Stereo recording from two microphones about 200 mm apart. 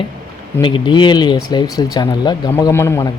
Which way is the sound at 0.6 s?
25° left (ahead or behind).